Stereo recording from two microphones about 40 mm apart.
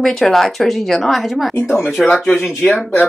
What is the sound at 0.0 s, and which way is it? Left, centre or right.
Speech, centre.